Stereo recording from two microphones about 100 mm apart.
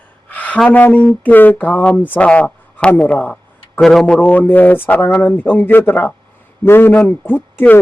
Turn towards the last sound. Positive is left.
turn(degrees=20)  # may be behind; listen again after turning